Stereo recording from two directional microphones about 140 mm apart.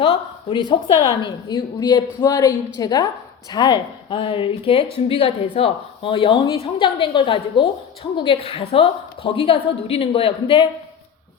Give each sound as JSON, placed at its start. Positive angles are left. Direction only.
{"t": 0.0, "sound": "a woman's voice", "side_deg": 40}